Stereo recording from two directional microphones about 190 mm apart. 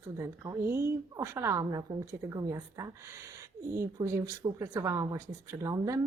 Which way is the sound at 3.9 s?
15° right (ahead or behind).